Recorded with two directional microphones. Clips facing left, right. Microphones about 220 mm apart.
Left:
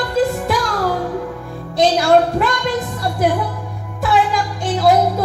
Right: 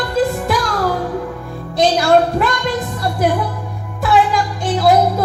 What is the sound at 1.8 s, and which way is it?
Music, 25° left (ahead or behind).